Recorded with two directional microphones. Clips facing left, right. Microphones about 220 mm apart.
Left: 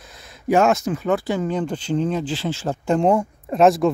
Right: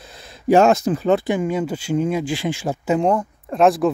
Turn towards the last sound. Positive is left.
turn(degrees=0)  # may be behind; listen again after turning